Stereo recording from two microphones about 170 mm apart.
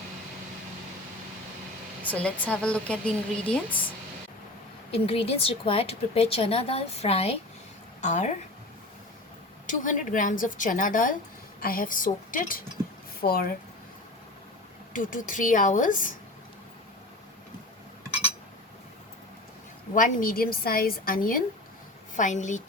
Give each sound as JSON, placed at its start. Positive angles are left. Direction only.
{"t": 2.0, "sound": "a woman's voice", "side_deg": 10}
{"t": 4.9, "sound": "a woman's voice", "side_deg": 35}
{"t": 9.6, "sound": "speech", "side_deg": 50}
{"t": 14.9, "sound": "speech", "side_deg": 50}
{"t": 19.9, "sound": "a woman's voice", "side_deg": 50}